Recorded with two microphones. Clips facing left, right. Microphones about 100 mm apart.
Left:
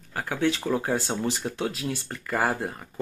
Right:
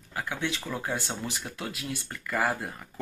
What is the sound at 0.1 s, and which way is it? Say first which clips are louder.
Speech: left 6 dB; 35° left (ahead or behind).